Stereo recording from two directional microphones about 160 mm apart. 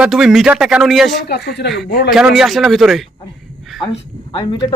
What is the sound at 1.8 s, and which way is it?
Speech, 75° left (ahead or behind).